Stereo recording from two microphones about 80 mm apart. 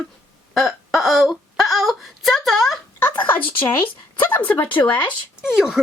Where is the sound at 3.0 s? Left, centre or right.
Left.